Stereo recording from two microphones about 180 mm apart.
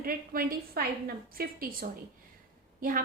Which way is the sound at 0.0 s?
50° right (ahead or behind).